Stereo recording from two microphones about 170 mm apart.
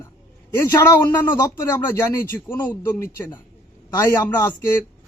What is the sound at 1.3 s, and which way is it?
A man's voice, 15° left (ahead or behind).